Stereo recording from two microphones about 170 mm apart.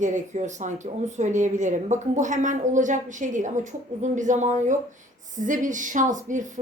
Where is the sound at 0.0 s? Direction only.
45° right (ahead or behind).